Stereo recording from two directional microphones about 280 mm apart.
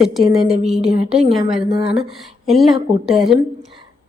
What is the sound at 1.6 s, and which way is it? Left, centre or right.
Speech, centre.